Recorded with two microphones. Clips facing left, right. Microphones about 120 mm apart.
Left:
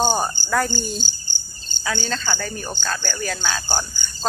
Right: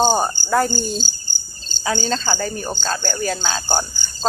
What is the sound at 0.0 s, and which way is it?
Cricket, 30° right (ahead or behind).